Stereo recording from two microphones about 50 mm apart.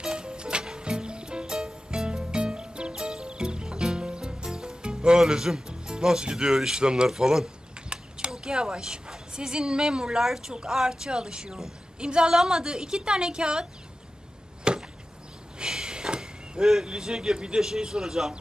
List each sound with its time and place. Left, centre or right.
0.0 s music: centre
5.2 s a woman's voice: centre
7.9 s a sound: centre
10.2 s a woman's voice: centre
14.6 s chop: centre
15.6 s speech: centre